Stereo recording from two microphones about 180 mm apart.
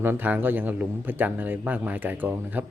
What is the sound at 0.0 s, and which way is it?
A man's voice, 10° right (ahead or behind).